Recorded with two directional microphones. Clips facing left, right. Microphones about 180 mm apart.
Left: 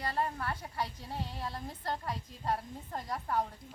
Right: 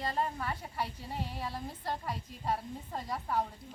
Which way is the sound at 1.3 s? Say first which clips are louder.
Right 1 dB; centre (ahead or behind).